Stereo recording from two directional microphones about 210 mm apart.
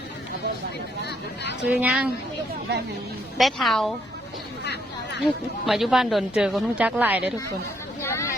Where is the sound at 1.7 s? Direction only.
5° right (ahead or behind).